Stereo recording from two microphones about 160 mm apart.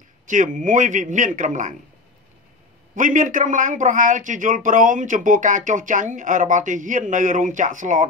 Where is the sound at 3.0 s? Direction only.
55° right (ahead or behind).